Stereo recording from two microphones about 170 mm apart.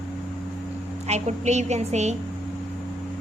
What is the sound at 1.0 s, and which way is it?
A woman's voice, 40° right (ahead or behind).